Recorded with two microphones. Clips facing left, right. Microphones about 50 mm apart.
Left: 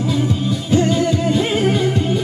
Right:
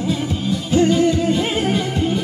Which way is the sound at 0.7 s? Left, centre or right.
Centre.